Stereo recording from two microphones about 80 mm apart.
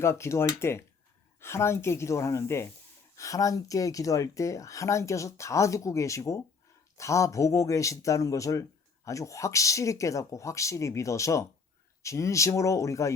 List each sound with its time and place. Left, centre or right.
0.0 s speech: left